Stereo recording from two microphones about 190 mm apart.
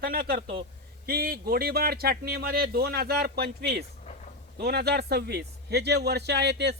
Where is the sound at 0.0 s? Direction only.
50° right (ahead or behind).